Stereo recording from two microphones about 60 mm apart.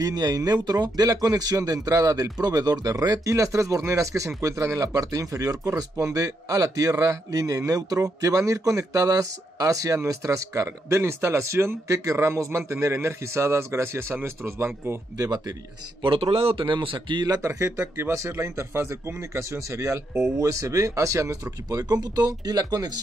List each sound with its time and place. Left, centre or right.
0.0 s a man's voice: right
9.9 s a man's voice: right
16.3 s speech: right
17.5 s speech: right